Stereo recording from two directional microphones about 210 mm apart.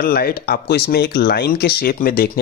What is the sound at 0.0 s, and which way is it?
Speech, 45° left (ahead or behind).